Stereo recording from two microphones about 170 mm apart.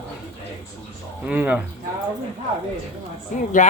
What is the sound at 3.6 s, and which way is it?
Speech, 45° left (ahead or behind).